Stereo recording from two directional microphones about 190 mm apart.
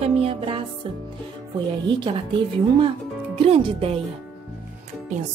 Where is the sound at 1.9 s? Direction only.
25° right (ahead or behind).